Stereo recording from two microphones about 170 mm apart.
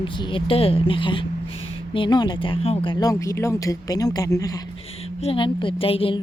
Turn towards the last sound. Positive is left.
turn(degrees=35)  # may be behind; listen again after turning